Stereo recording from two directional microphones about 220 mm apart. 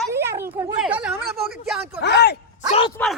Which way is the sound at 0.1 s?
10° right (ahead or behind).